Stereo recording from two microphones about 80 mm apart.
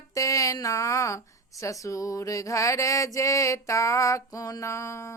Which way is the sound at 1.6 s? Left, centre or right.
Left.